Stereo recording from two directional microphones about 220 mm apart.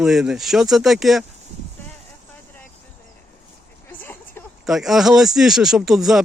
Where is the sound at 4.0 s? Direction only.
10° left (ahead or behind).